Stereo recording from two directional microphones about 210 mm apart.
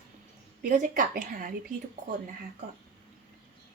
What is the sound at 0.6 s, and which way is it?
Speech, 40° right (ahead or behind).